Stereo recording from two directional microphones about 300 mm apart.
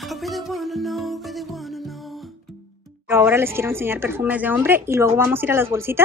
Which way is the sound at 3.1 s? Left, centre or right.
Centre.